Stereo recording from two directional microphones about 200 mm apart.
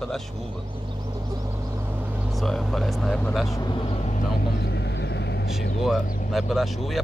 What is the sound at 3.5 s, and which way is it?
Speech, 20° left (ahead or behind).